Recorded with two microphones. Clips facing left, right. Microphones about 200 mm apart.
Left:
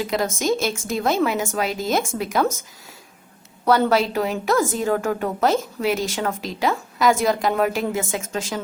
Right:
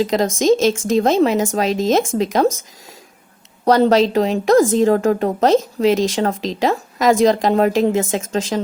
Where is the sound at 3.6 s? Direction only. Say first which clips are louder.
Right 5 dB; 35° right (ahead or behind).